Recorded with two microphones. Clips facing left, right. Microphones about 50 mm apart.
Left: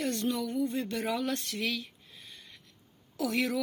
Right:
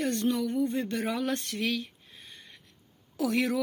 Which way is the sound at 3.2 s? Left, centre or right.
Centre.